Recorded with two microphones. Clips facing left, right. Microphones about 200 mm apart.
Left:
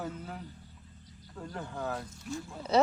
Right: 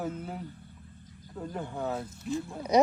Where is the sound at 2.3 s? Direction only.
20° right (ahead or behind).